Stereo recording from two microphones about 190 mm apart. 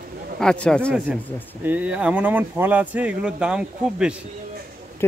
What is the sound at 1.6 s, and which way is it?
Speech, 10° right (ahead or behind).